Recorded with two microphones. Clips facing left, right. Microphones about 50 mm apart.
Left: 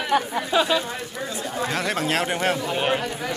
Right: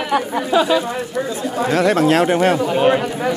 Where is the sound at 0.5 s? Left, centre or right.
Right.